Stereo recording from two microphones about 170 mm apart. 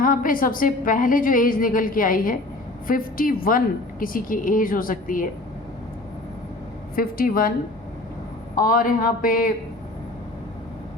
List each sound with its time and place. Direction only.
0.0 s a woman's voice: 55° left (ahead or behind)
6.9 s a man's voice: 60° left (ahead or behind)
8.5 s a man's voice: 55° left (ahead or behind)